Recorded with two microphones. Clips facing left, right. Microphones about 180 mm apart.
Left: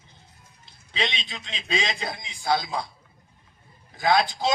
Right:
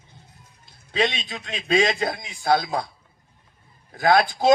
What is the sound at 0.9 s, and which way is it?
A man's voice, 50° right (ahead or behind).